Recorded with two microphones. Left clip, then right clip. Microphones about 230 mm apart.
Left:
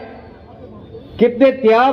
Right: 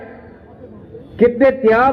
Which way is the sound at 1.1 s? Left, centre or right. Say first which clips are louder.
Even; right.